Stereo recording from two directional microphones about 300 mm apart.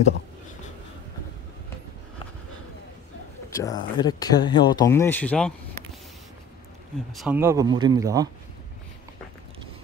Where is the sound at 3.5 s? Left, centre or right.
Centre.